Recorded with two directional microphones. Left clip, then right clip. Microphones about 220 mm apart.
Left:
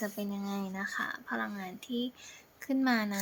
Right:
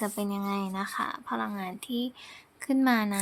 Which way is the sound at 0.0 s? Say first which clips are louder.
Right 6 dB; 30° right (ahead or behind).